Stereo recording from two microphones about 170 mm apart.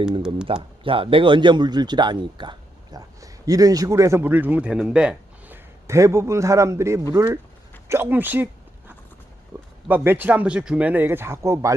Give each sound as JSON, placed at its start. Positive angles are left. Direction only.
{"t": 0.4, "sound": "a man's voice", "side_deg": -30}
{"t": 9.9, "sound": "speech", "side_deg": -10}